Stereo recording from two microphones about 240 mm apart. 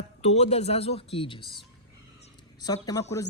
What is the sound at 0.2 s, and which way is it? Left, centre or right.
Speech, left.